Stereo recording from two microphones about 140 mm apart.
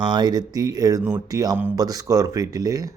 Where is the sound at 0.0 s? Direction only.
30° right (ahead or behind).